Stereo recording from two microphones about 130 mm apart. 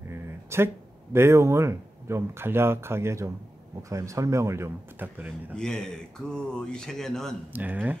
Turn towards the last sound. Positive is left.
turn(degrees=-15)  # may be behind; listen again after turning